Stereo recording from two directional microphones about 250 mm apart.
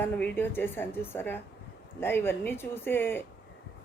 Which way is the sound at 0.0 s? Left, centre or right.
Centre.